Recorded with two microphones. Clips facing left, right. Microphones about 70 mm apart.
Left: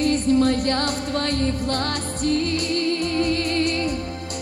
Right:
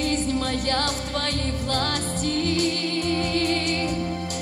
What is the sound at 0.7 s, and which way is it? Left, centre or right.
Music, left.